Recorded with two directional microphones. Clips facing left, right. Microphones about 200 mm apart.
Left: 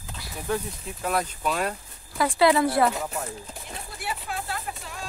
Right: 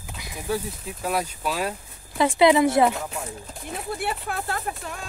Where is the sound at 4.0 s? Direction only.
55° right (ahead or behind).